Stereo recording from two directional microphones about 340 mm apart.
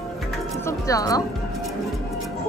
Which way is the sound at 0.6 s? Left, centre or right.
Centre.